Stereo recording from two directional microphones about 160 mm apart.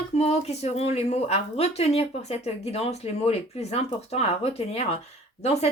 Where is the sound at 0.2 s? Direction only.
40° left (ahead or behind).